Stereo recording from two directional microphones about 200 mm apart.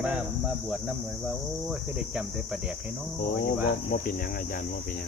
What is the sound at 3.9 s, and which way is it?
Speech, 45° left (ahead or behind).